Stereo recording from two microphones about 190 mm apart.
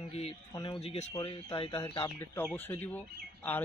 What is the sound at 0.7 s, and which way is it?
A man's voice, 35° left (ahead or behind).